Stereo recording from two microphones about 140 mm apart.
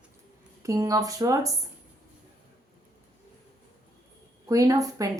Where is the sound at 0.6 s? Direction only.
25° right (ahead or behind).